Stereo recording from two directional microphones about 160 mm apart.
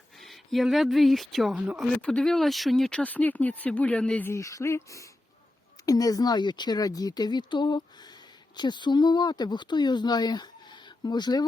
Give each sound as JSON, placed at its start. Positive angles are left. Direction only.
{"t": 0.2, "sound": "speech", "side_deg": 0}
{"t": 2.0, "sound": "speech", "side_deg": 5}